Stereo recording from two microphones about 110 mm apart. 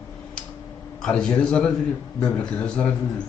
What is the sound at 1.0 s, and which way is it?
A man's voice, 10° left (ahead or behind).